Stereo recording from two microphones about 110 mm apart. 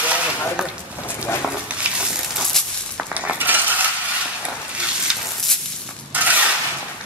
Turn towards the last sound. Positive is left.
turn(degrees=-15)  # may be behind; listen again after turning